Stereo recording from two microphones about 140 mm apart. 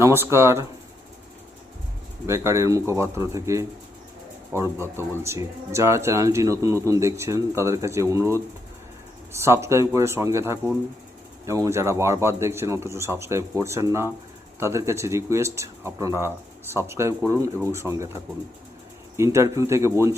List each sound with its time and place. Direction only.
0.0 s speech: 20° right (ahead or behind)
2.2 s speech: 20° right (ahead or behind)